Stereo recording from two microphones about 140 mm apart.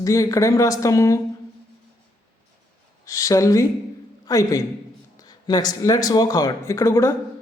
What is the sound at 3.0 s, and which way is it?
Speech, 25° left (ahead or behind).